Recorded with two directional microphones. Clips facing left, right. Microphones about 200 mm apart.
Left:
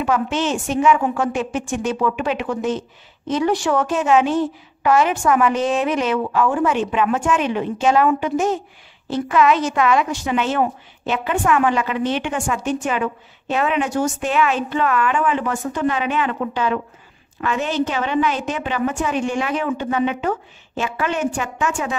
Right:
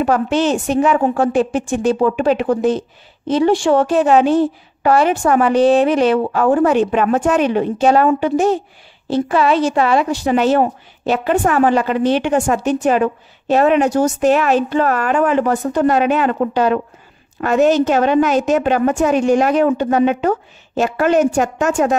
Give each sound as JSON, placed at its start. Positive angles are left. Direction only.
{"t": 0.0, "sound": "a woman's voice", "side_deg": -35}